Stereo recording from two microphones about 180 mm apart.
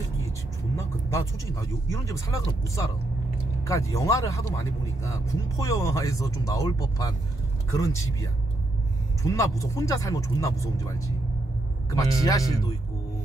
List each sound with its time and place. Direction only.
0.7 s speech: 15° left (ahead or behind)